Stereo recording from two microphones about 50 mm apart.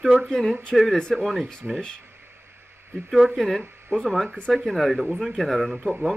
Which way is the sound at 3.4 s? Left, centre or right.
Centre.